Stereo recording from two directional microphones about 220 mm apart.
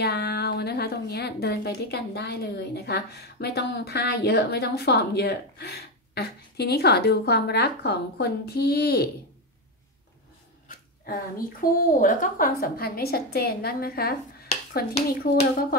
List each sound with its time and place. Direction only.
0.0 s a woman's voice: 45° left (ahead or behind)
10.7 s a woman's voice: 40° left (ahead or behind)